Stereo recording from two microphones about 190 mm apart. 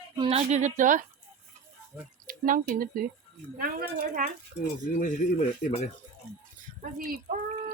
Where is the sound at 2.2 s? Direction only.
45° right (ahead or behind).